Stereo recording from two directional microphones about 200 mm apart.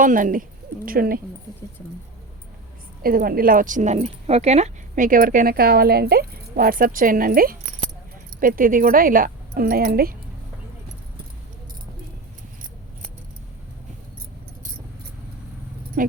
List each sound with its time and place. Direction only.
0.0 s speech: 40° right (ahead or behind)
3.0 s speech: 45° right (ahead or behind)
16.0 s speech: 40° right (ahead or behind)